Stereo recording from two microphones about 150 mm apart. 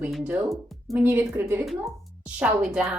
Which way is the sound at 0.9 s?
15° right (ahead or behind).